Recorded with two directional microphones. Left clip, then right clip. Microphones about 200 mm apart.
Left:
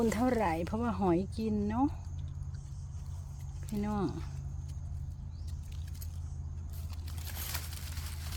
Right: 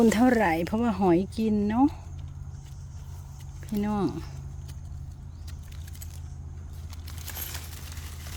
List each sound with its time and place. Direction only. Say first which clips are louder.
0.0 s speech: right 8 dB; 45° right (ahead or behind)
3.8 s speech: right 7 dB; 30° right (ahead or behind)